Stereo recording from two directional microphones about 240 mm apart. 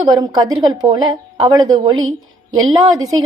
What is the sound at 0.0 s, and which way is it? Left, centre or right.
A woman's voice, centre.